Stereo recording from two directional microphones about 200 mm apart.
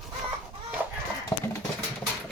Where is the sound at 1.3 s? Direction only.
10° left (ahead or behind).